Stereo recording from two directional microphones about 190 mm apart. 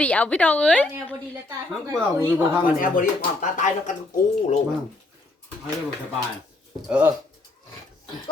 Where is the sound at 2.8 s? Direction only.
45° left (ahead or behind).